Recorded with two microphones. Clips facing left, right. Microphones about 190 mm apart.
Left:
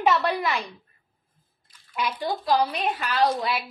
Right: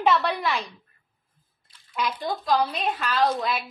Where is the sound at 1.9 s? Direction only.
5° left (ahead or behind).